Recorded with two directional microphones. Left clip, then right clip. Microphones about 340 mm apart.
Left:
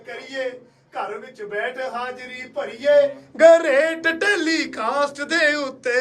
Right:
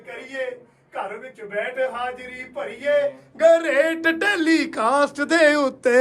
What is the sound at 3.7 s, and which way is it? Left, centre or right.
Speech, centre.